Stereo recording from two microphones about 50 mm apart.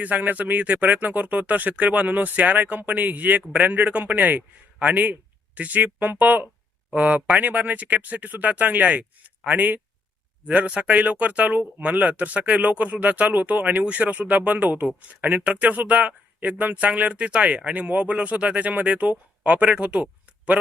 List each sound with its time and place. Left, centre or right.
0.0 s a man's voice: right